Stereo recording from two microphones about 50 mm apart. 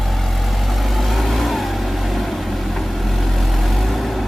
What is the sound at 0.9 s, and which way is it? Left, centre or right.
Vehicle, centre.